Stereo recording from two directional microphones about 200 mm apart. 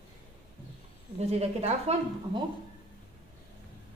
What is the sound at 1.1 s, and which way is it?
Speech, 30° right (ahead or behind).